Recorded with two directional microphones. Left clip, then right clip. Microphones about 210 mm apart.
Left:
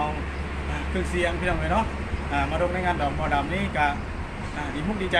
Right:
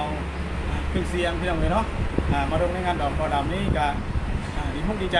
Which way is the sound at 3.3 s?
5° right (ahead or behind).